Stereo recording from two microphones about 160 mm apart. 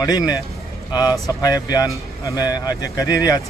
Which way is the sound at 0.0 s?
25° left (ahead or behind).